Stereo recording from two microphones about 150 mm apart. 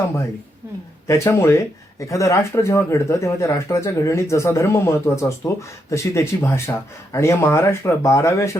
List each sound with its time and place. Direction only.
1.0 s speech: 20° left (ahead or behind)